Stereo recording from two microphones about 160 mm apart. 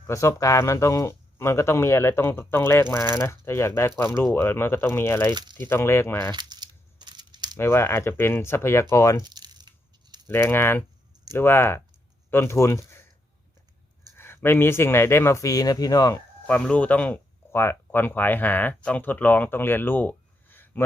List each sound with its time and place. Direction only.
0.0 s speech: 20° left (ahead or behind)
5.3 s speech: 25° right (ahead or behind)
5.5 s speech: 15° left (ahead or behind)
6.3 s crumpling: 25° right (ahead or behind)
7.6 s speech: 15° left (ahead or behind)
9.2 s tearing: 25° right (ahead or behind)
10.2 s speech: 15° left (ahead or behind)
14.2 s speech: 15° left (ahead or behind)
16.5 s speech: 10° left (ahead or behind)